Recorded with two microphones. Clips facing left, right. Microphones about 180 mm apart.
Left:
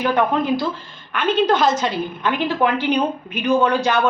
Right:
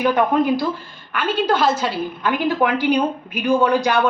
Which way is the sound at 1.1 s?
5° right (ahead or behind).